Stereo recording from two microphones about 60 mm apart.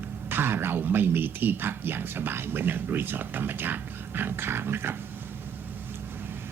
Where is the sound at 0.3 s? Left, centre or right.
Right.